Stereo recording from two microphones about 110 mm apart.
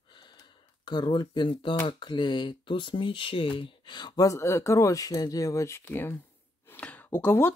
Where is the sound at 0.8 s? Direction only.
45° left (ahead or behind).